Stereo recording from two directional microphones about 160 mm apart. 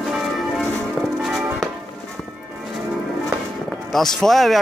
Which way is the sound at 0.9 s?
Centre (ahead or behind).